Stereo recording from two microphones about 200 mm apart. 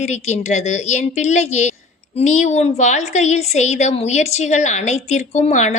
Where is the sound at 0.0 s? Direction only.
35° left (ahead or behind).